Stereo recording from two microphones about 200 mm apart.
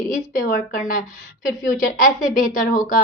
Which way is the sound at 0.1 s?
45° left (ahead or behind).